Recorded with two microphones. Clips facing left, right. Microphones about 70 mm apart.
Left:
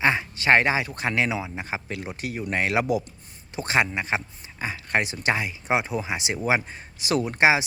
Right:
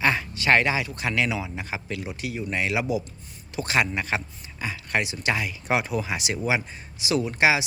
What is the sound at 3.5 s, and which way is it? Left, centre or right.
Speech, left.